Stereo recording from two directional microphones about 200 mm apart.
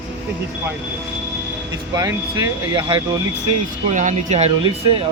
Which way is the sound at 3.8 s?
35° right (ahead or behind).